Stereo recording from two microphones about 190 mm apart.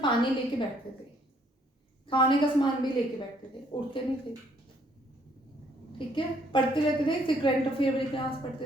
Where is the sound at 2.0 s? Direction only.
25° left (ahead or behind).